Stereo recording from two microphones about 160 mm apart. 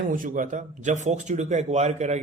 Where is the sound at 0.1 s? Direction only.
55° right (ahead or behind).